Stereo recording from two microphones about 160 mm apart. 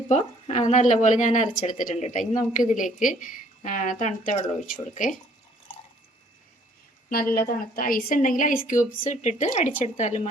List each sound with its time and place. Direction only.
0.1 s speech: 45° left (ahead or behind)
7.3 s speech: 65° left (ahead or behind); by 10.2 s 45° left (ahead or behind)